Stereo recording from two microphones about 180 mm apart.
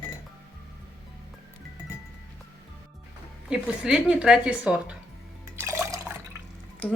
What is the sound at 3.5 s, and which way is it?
A woman's voice, 5° right (ahead or behind).